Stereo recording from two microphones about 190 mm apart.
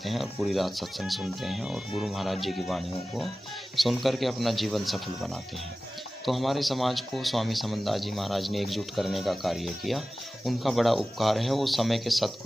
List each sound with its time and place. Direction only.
0.0 s speech: centre (ahead or behind)